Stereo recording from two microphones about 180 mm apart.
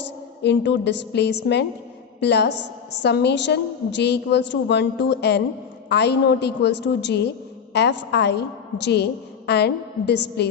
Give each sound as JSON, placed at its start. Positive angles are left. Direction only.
{"t": 0.4, "sound": "a woman's voice", "side_deg": 75}